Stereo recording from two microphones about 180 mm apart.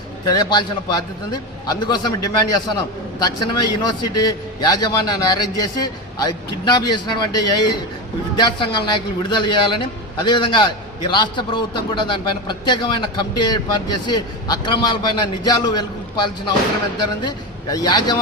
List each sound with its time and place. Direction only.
0.3 s a man's voice: 25° left (ahead or behind)